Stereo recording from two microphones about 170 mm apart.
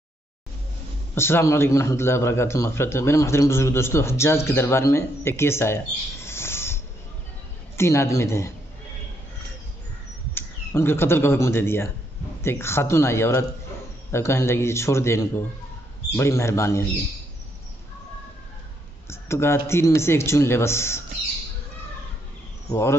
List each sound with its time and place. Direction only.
1.1 s a man's voice: 15° left (ahead or behind)
6.2 s a sound: 15° left (ahead or behind)
7.7 s a man's voice: 15° left (ahead or behind)
10.3 s a man's voice: 15° left (ahead or behind)
19.0 s a man's voice: 15° left (ahead or behind)
22.7 s a man's voice: 15° left (ahead or behind)